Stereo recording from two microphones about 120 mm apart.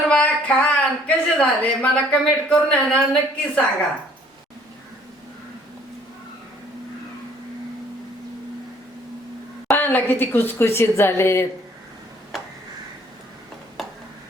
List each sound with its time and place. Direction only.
0.1 s a woman's voice: 10° left (ahead or behind)
9.6 s a woman's voice: 15° left (ahead or behind)
13.8 s a sound: centre (ahead or behind)